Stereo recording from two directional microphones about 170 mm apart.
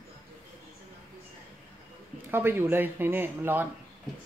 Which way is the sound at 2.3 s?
15° right (ahead or behind).